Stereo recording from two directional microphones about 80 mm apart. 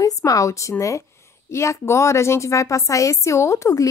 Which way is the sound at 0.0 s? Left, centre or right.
Left.